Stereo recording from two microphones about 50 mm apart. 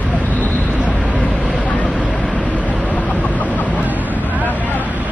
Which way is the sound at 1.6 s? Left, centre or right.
Left.